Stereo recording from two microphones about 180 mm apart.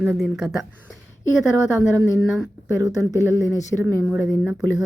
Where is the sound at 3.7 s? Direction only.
5° right (ahead or behind).